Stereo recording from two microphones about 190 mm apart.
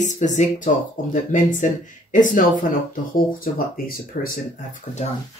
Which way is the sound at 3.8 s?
50° left (ahead or behind).